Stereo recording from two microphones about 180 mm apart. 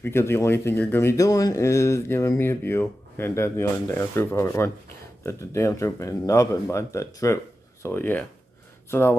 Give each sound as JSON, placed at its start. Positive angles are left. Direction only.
{"t": 0.0, "sound": "speech", "side_deg": 15}